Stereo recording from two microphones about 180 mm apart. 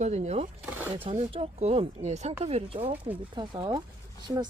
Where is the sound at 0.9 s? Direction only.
35° right (ahead or behind).